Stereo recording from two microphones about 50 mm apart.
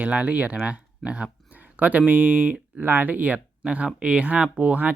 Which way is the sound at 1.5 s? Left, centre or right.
Right.